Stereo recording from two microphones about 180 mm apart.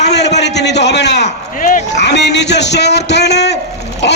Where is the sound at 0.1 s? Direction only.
70° left (ahead or behind).